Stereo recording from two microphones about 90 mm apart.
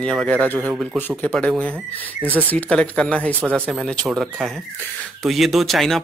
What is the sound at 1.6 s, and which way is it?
Speech, 15° left (ahead or behind).